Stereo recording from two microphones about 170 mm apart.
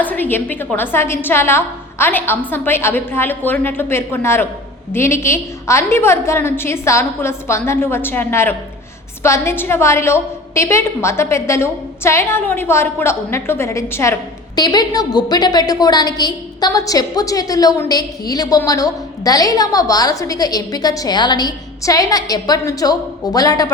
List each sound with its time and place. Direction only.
0.0 s a woman's voice: 10° left (ahead or behind)